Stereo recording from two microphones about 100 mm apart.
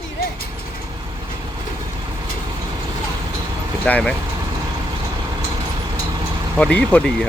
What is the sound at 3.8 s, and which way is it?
Speech, 10° left (ahead or behind).